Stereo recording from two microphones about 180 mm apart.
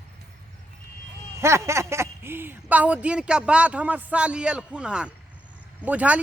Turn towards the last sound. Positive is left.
turn(degrees=-5)  # may be behind; listen again after turning